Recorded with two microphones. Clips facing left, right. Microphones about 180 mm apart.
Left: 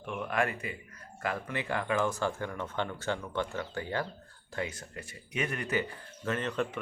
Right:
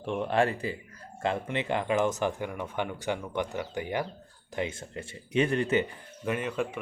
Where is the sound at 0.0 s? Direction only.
30° right (ahead or behind).